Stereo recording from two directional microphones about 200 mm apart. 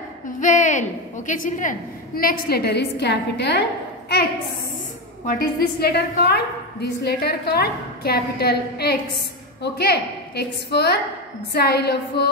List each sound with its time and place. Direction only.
0.4 s a woman's voice: 40° left (ahead or behind); by 3.6 s 55° left (ahead or behind)
5.2 s a woman's voice: 45° left (ahead or behind)